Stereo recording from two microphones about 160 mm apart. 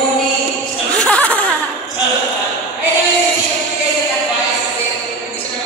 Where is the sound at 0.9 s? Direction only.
10° left (ahead or behind).